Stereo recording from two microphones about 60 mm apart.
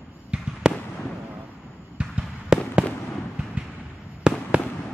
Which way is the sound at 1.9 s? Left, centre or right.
Centre.